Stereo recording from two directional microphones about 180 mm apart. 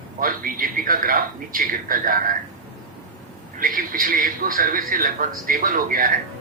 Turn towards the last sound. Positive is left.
turn(degrees=-50)  # may be behind; listen again after turning